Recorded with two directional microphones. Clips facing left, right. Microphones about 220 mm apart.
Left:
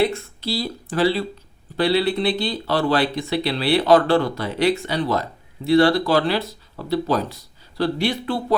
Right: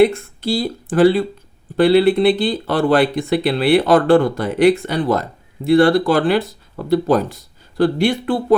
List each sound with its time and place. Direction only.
0.0 s speech: 50° right (ahead or behind)